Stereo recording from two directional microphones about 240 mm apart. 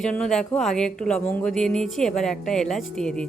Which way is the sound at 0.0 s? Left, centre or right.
Centre.